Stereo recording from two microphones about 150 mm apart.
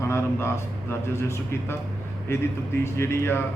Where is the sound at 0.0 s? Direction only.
20° left (ahead or behind).